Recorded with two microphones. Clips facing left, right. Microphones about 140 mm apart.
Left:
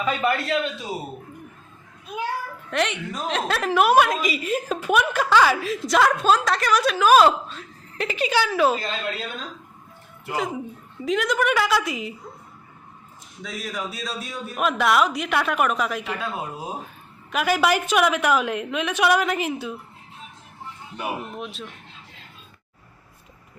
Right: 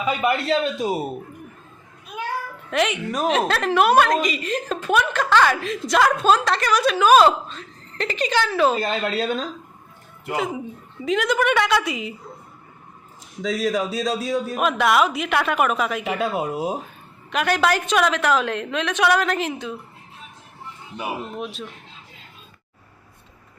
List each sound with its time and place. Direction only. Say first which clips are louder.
0.0 s a man's voice: right 1 dB; 10° right (ahead or behind)
0.3 s a man's voice: right 4 dB; 30° right (ahead or behind)
2.6 s a woman's voice: right 3 dB; 5° right (ahead or behind)
8.8 s speech: right 6 dB; 80° right
10.3 s a woman's voice: right 1 dB; centre (ahead or behind)
13.4 s a man's voice: right 9 dB; 90° right
14.5 s a woman's voice: even; centre (ahead or behind)
16.2 s a man's voice: right 7 dB; 90° right
17.3 s a woman's voice: even; 5° left (ahead or behind)
21.0 s a woman's voice: right 1 dB; centre (ahead or behind)